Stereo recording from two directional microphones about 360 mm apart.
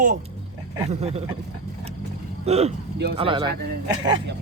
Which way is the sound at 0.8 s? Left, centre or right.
Centre.